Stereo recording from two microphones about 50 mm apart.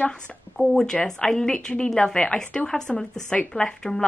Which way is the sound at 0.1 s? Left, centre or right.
Centre.